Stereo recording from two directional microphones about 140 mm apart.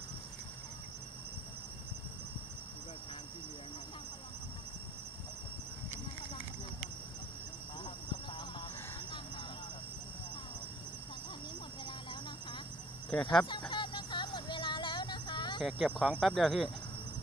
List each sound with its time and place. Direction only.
7.8 s a sound: 30° left (ahead or behind)
13.1 s speech: 5° left (ahead or behind)
13.5 s music: 35° left (ahead or behind)
15.6 s speech: centre (ahead or behind)